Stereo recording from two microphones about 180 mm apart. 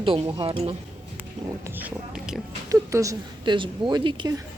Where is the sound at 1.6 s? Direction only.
10° right (ahead or behind).